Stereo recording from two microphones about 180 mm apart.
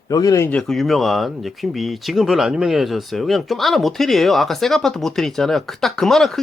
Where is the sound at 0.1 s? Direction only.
20° left (ahead or behind).